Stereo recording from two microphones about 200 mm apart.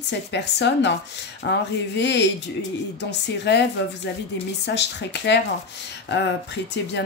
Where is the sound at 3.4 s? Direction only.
60° left (ahead or behind).